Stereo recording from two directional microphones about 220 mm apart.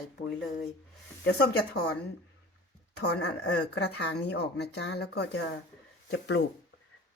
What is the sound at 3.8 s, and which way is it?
Speech, 50° left (ahead or behind).